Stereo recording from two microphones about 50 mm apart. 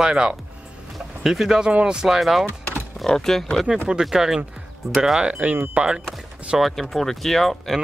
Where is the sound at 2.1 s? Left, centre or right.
Centre.